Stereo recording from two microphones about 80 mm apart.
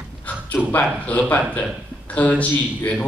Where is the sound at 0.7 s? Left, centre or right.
Centre.